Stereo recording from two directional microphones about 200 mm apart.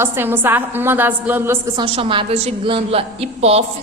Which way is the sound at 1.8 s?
25° right (ahead or behind).